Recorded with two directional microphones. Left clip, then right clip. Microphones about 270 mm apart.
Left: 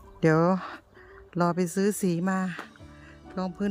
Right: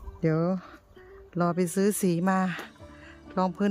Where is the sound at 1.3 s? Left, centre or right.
Centre.